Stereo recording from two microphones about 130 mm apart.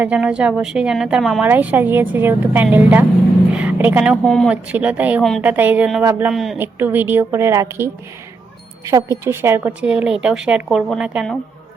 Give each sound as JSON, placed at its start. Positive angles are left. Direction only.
{"t": 0.0, "sound": "a woman's voice", "side_deg": -10}
{"t": 3.5, "sound": "a sound", "side_deg": -10}
{"t": 4.1, "sound": "a woman's voice", "side_deg": 5}
{"t": 4.4, "sound": "a woman's voice", "side_deg": -10}
{"t": 6.3, "sound": "a woman's voice", "side_deg": 0}
{"t": 6.6, "sound": "a woman's voice", "side_deg": -15}
{"t": 8.9, "sound": "a woman's voice", "side_deg": -25}
{"t": 9.8, "sound": "a woman's voice", "side_deg": -5}